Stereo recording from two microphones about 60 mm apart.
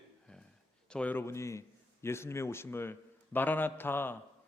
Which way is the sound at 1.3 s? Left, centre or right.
Left.